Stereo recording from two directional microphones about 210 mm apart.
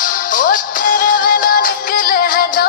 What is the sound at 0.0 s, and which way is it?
Music, 40° left (ahead or behind).